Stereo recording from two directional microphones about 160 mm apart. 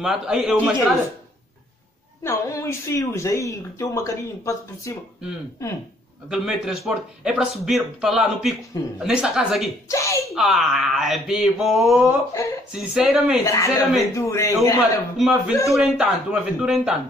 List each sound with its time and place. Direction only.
0.0 s a man's voice: 5° right (ahead or behind)
2.2 s speech: 20° left (ahead or behind)
6.3 s a man's voice: centre (ahead or behind)
9.8 s a sound: 20° left (ahead or behind)
10.3 s a man's voice: centre (ahead or behind)
13.5 s speech: 20° left (ahead or behind)
15.1 s a man's voice: centre (ahead or behind)